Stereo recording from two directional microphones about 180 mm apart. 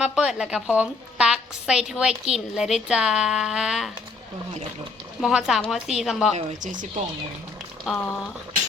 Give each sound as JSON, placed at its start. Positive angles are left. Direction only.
{"t": 0.0, "sound": "a woman's voice", "side_deg": -5}
{"t": 5.2, "sound": "a woman's voice", "side_deg": -5}
{"t": 6.3, "sound": "speech", "side_deg": -45}
{"t": 7.9, "sound": "a woman's voice", "side_deg": 0}